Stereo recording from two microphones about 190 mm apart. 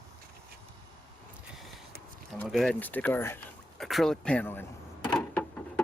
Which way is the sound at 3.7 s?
Centre (ahead or behind).